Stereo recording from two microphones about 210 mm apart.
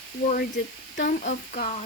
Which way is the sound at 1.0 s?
40° left (ahead or behind).